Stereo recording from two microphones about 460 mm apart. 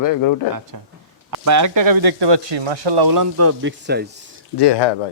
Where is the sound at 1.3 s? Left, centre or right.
Right.